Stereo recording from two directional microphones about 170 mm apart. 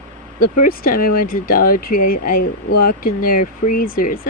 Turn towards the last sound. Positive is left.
turn(degrees=55)  # may be behind; listen again after turning